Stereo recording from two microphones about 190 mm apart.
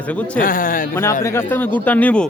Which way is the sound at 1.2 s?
10° left (ahead or behind).